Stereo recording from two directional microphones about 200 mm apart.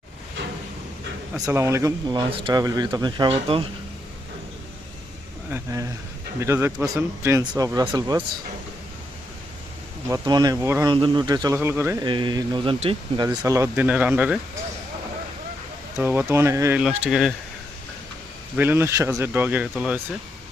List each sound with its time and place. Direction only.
1.4 s speech: 15° right (ahead or behind)
5.5 s speech: 15° right (ahead or behind)
10.1 s speech: 20° right (ahead or behind)
12.0 s speech: 25° right (ahead or behind)
13.2 s speech: 15° right (ahead or behind)
16.0 s speech: 10° right (ahead or behind)
16.8 s speech: centre (ahead or behind)
18.5 s speech: 10° right (ahead or behind)